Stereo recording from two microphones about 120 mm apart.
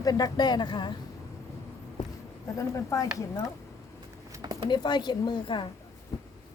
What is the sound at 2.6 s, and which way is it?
Speech, 25° left (ahead or behind).